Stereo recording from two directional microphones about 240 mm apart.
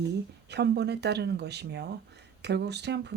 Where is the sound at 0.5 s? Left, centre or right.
Right.